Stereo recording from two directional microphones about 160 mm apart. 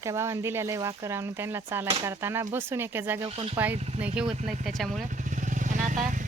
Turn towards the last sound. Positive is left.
turn(degrees=-50)  # may be behind; listen again after turning